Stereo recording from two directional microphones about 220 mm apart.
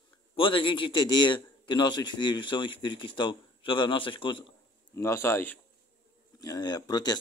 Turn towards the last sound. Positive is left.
turn(degrees=20)  # may be behind; listen again after turning